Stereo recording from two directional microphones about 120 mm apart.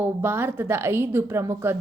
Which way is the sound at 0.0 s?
15° right (ahead or behind).